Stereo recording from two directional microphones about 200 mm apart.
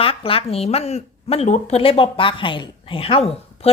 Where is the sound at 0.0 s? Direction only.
25° left (ahead or behind).